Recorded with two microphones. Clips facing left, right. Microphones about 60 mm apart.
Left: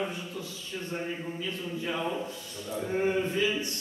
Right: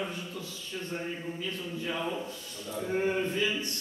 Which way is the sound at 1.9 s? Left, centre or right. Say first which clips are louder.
Left 2 dB; centre.